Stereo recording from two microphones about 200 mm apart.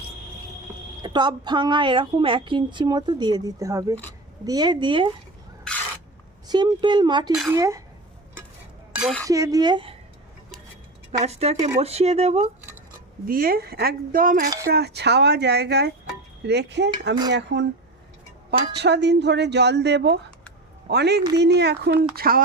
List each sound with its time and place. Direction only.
1.0 s a woman's voice: 20° right (ahead or behind)
6.5 s a woman's voice: 20° right (ahead or behind)
9.0 s dishes: centre (ahead or behind)
9.2 s a woman's voice: 15° right (ahead or behind)
11.2 s speech: 30° right (ahead or behind)
13.2 s a woman's voice: 45° right (ahead or behind)
18.8 s a woman's voice: 60° right (ahead or behind)